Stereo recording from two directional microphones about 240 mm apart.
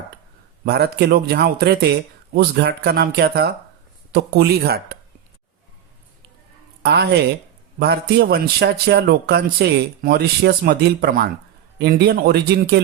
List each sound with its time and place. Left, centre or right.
0.6 s a man's voice: right
6.8 s a man's voice: right